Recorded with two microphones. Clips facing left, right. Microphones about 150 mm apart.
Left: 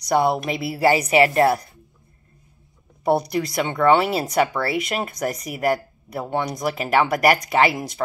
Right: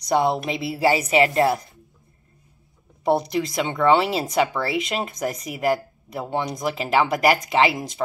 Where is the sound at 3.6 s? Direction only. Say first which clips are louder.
Left 1 dB; 25° right (ahead or behind).